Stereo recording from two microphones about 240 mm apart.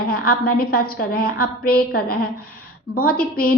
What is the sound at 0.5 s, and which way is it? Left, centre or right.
A woman's voice, left.